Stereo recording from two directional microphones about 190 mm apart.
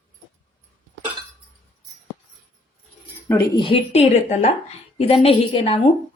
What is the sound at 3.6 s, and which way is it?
A woman's voice, 30° left (ahead or behind).